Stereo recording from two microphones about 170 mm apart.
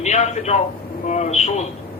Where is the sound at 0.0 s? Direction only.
45° left (ahead or behind).